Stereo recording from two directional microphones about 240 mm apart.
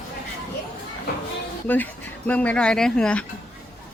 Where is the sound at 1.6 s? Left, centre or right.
Centre.